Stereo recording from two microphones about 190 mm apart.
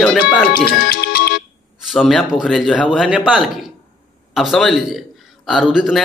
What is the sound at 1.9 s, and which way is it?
A man's voice, centre (ahead or behind).